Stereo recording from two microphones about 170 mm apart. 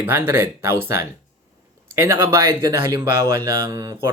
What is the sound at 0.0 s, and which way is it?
Speech, 10° right (ahead or behind).